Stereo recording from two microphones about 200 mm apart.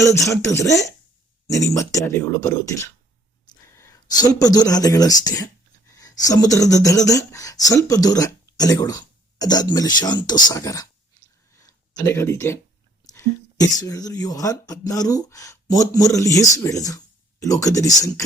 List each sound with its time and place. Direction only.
0.0 s speech: 15° left (ahead or behind)
11.9 s speech: 15° left (ahead or behind)